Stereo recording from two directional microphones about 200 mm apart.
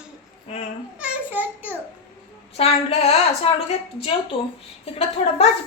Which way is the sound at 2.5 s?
30° left (ahead or behind).